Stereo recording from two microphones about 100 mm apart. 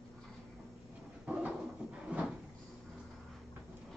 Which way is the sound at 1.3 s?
10° right (ahead or behind).